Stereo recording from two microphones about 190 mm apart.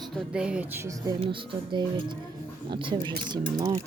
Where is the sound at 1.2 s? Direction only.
25° right (ahead or behind).